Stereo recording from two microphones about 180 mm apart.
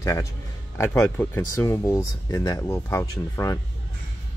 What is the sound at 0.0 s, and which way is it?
Speech, 15° left (ahead or behind).